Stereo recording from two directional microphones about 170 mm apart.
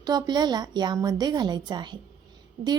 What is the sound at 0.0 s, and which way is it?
A woman's voice, 25° right (ahead or behind).